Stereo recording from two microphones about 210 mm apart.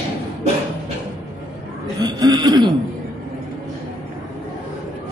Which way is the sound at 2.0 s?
20° right (ahead or behind).